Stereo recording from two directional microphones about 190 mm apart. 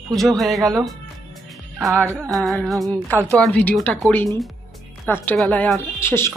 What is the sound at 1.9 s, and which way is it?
Music, 15° right (ahead or behind).